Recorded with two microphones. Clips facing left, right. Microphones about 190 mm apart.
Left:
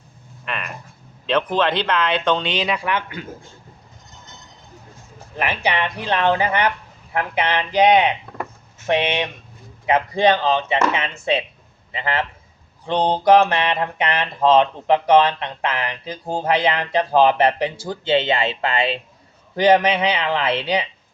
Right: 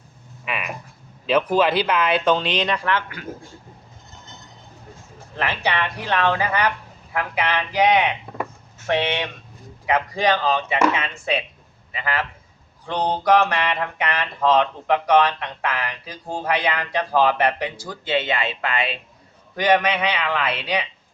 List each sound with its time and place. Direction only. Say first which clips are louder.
0.4 s a sound: even; 5° right (ahead or behind)
1.3 s speech: right 1 dB; 5° right (ahead or behind); by 3.0 s 10° left (ahead or behind)
5.4 s speech: left 2 dB; 15° left (ahead or behind)